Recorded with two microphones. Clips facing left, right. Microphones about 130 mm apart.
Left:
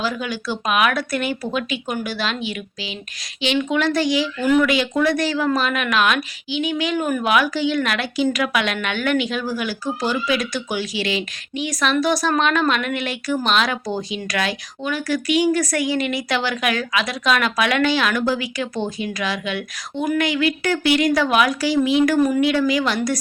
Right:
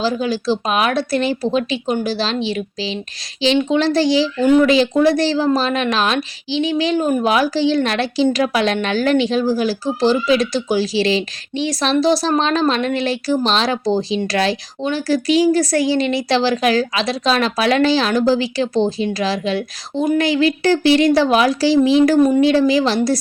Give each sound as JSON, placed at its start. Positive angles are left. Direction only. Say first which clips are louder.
{"t": 0.0, "sound": "speech", "louder": "right 6 dB", "side_deg": -30}